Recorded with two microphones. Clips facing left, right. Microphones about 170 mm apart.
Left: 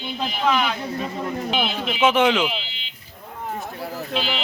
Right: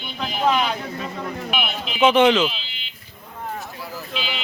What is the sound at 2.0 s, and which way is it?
Speech, 5° left (ahead or behind).